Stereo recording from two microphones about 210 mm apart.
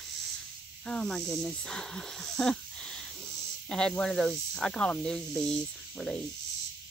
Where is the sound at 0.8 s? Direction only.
5° left (ahead or behind).